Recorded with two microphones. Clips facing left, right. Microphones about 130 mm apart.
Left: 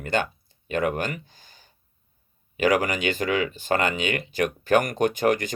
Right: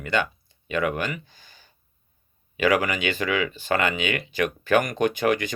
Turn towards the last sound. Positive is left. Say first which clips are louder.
# even
turn(degrees=45)  # may be behind; listen again after turning